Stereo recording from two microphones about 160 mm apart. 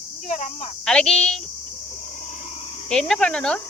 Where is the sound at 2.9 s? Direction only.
5° left (ahead or behind).